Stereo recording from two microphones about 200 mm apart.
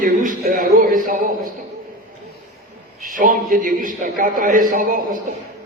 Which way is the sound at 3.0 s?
45° right (ahead or behind).